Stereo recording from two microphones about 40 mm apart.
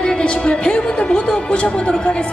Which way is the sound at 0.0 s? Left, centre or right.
Left.